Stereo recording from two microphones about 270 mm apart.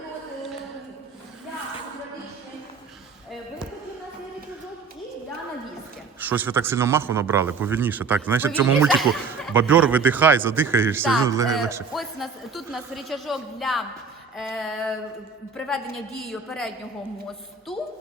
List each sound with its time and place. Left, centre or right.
6.1 s a man's voice: centre
11.9 s speech: centre